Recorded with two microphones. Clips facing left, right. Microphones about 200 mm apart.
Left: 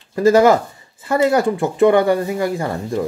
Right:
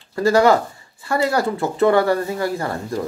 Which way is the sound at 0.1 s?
20° left (ahead or behind).